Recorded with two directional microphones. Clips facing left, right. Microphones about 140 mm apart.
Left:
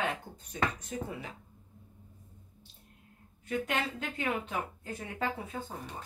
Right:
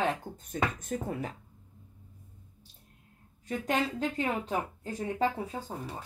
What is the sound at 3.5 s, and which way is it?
Speech, 35° right (ahead or behind).